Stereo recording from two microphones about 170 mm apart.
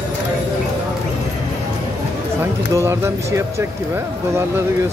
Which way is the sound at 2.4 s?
15° right (ahead or behind).